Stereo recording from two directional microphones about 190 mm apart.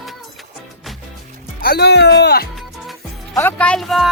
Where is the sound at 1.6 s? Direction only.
55° left (ahead or behind).